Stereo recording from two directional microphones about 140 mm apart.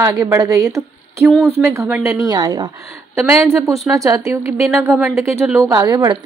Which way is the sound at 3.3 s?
20° right (ahead or behind).